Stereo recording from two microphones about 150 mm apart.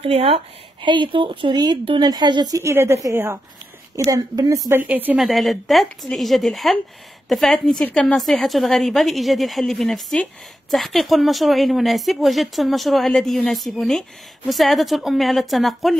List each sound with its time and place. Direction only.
0.0 s speech: 40° right (ahead or behind); by 4.8 s 20° right (ahead or behind)
4.8 s a woman's voice: 10° right (ahead or behind)
5.2 s a woman's voice: centre (ahead or behind)